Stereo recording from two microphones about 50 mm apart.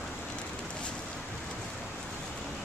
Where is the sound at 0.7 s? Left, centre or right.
Left.